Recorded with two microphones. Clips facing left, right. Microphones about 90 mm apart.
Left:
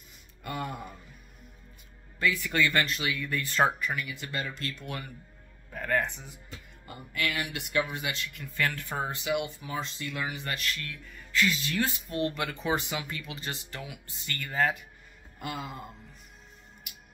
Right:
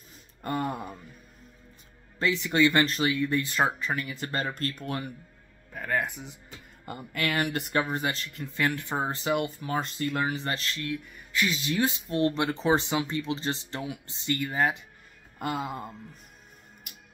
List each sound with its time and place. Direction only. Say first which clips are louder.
0.4 s speech: right 5 dB; 40° right (ahead or behind)
2.1 s speech: right 3 dB; 25° right (ahead or behind)
3.8 s speech: right 2 dB; 35° right (ahead or behind)
5.7 s speech: even; 10° right (ahead or behind)
6.9 s speech: right 3 dB; 50° right (ahead or behind)
8.5 s speech: right 3 dB; 20° right (ahead or behind)
9.1 s speech: right 3 dB; 40° right (ahead or behind)
10.3 s speech: right 3 dB; 30° right (ahead or behind)
15.3 s music: right 6 dB; 45° right (ahead or behind)